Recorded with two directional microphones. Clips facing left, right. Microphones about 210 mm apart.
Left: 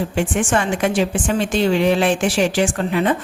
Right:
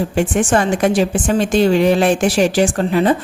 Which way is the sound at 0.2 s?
40° right (ahead or behind).